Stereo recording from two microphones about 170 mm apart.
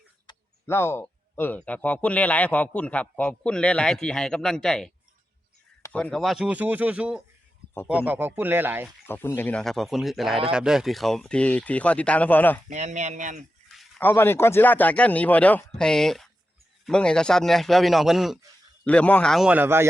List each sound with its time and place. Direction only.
0.3 s a sound: 25° left (ahead or behind)
0.7 s speech: 15° left (ahead or behind); by 8.9 s 10° right (ahead or behind)
9.0 s speech: 15° left (ahead or behind)
12.6 s speech: 45° right (ahead or behind)
14.0 s speech: 15° left (ahead or behind); by 19.9 s 15° right (ahead or behind)